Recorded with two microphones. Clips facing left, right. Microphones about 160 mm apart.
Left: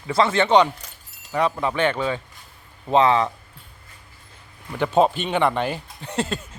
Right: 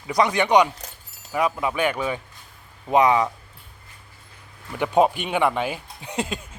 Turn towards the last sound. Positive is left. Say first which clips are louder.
# left 2 dB
turn(degrees=-10)  # may be behind; listen again after turning